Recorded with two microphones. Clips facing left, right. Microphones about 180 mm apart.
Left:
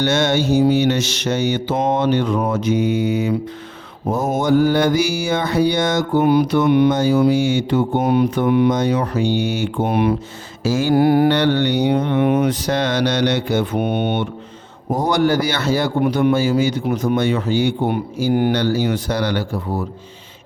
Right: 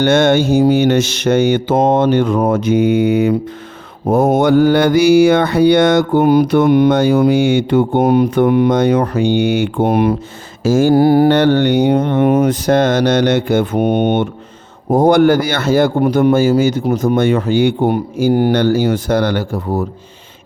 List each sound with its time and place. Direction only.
0.0 s a man's voice: 55° right (ahead or behind)
6.2 s a man's voice: 50° right (ahead or behind)
6.9 s speech: 60° right (ahead or behind); by 10.2 s 45° right (ahead or behind)
10.6 s mantra: 50° right (ahead or behind)
10.9 s mantra: 35° right (ahead or behind)
11.3 s a man's voice: 45° right (ahead or behind)